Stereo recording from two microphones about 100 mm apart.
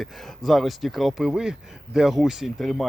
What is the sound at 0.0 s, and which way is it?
Speech, centre (ahead or behind).